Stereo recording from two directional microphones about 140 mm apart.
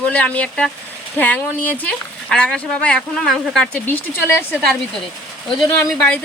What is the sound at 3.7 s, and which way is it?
Speech, 15° left (ahead or behind).